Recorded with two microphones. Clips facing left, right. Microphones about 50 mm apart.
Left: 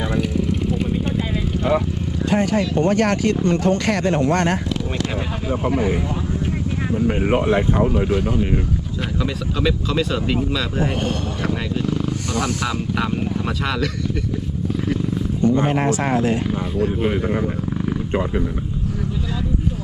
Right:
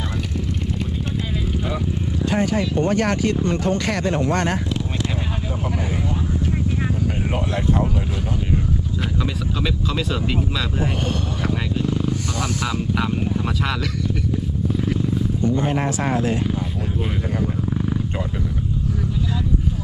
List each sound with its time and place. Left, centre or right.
0.2 s vehicle: centre
2.3 s speech: left
5.6 s speech: left
6.9 s speech: left
9.6 s speech: centre
12.6 s speech: centre
15.4 s speech: left
17.0 s speech: centre